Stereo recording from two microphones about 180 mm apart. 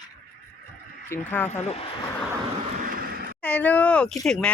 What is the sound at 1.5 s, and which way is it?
Speech, 35° left (ahead or behind).